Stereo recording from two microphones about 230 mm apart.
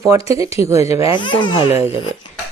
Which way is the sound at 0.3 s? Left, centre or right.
Centre.